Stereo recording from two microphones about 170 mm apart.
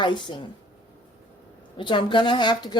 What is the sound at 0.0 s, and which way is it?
Speech, 25° left (ahead or behind).